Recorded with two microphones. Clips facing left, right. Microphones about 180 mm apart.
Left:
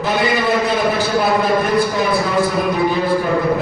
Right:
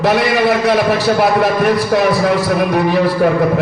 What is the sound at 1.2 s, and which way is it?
Speech, 70° right (ahead or behind).